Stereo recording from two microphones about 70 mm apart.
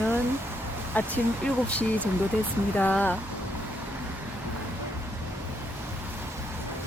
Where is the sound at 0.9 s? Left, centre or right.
Left.